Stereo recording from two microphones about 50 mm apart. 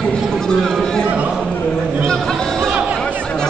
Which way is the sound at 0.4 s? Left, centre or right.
Centre.